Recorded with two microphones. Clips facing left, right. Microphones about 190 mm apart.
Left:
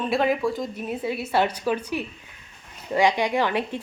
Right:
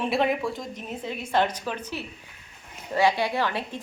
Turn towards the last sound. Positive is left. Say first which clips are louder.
# left 3 dB
turn(degrees=15)  # may be behind; listen again after turning